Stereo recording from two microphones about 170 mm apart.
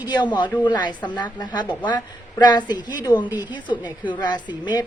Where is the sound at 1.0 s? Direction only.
10° left (ahead or behind).